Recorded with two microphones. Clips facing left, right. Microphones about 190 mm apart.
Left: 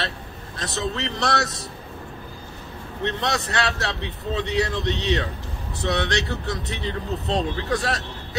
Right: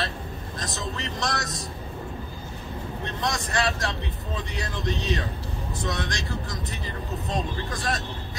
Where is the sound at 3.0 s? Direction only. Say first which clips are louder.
Left 6 dB; 70° left (ahead or behind).